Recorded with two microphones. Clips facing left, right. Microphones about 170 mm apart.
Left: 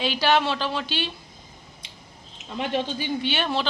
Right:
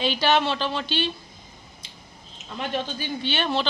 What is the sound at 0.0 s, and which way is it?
Speech, 5° left (ahead or behind).